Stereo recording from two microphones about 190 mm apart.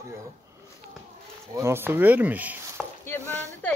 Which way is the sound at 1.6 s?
10° right (ahead or behind).